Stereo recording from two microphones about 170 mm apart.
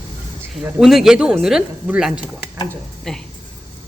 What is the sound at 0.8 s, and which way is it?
Speech, centre (ahead or behind).